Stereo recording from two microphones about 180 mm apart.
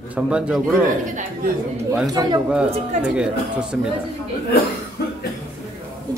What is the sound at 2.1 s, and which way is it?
Speech, 20° right (ahead or behind).